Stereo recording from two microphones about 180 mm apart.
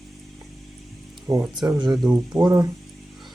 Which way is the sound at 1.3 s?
20° right (ahead or behind).